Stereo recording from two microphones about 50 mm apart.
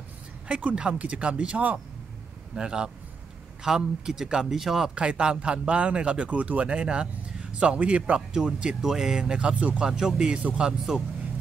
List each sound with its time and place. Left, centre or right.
0.5 s a man's voice: right; by 4.9 s centre
4.9 s a man's voice: right
8.3 s speech: centre
9.8 s speech: centre
10.3 s a man's voice: right